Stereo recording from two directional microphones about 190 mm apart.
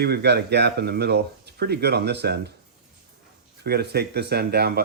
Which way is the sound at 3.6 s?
55° right (ahead or behind).